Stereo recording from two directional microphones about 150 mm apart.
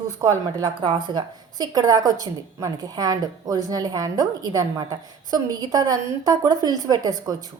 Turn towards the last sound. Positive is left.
turn(degrees=-25)  # may be behind; listen again after turning